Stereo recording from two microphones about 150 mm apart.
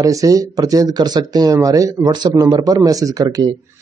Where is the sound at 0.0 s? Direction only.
20° right (ahead or behind).